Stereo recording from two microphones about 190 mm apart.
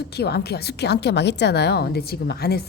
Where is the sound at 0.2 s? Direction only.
60° left (ahead or behind).